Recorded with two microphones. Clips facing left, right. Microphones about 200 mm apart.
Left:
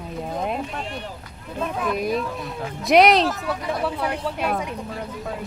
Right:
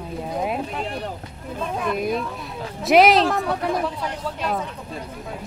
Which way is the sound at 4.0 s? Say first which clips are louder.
Left 3 dB; 60° left (ahead or behind).